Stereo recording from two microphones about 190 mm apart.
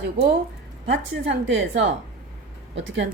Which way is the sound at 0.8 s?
70° right (ahead or behind).